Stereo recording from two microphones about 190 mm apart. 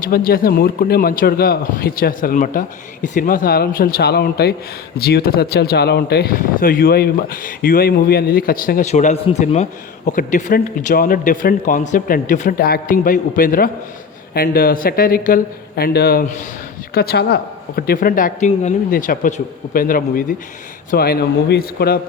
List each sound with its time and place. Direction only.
0.1 s speech: 50° left (ahead or behind)